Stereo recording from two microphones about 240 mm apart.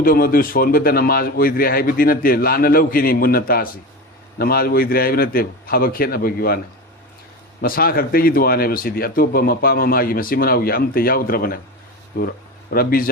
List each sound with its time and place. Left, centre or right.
0.0 s speech: left
7.6 s speech: left
12.7 s speech: left